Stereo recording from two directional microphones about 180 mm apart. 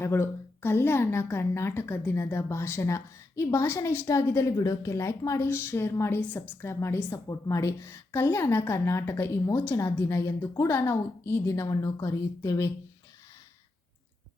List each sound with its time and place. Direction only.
0.0 s a woman's voice: 15° left (ahead or behind)